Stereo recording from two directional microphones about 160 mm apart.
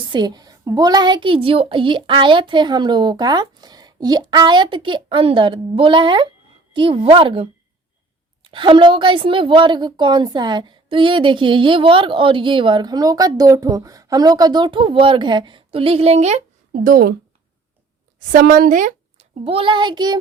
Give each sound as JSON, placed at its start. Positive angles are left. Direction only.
{"t": 0.1, "sound": "a woman's voice", "side_deg": -25}
{"t": 18.3, "sound": "a woman's voice", "side_deg": -65}
{"t": 19.5, "sound": "a woman's voice", "side_deg": -35}